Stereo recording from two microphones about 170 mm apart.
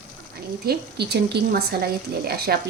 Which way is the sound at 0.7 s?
75° right (ahead or behind).